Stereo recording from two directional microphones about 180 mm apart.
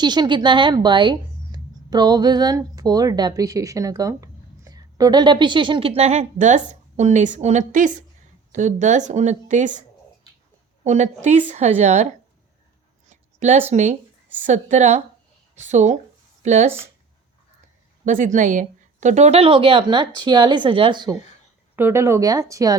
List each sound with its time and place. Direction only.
0.0 s a woman's voice: 25° right (ahead or behind); by 9.8 s 45° right (ahead or behind)
10.8 s a woman's voice: 40° right (ahead or behind)
13.1 s a sound: 40° right (ahead or behind)
14.4 s a woman's voice: 40° right (ahead or behind)
18.0 s speech: 45° right (ahead or behind); by 21.2 s 25° right (ahead or behind)
21.8 s speech: 15° right (ahead or behind)